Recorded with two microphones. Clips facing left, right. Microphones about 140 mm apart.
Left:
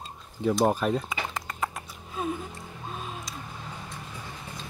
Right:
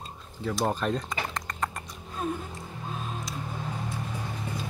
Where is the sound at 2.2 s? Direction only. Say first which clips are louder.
Even; centre (ahead or behind).